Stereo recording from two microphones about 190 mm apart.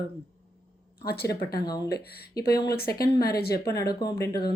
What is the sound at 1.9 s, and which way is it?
A woman's voice, 55° left (ahead or behind).